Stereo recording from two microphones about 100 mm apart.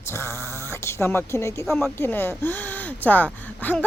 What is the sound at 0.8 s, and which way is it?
Speech, 25° left (ahead or behind).